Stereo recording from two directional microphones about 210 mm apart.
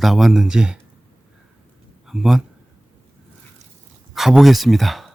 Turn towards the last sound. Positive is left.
turn(degrees=0)  # may be behind; listen again after turning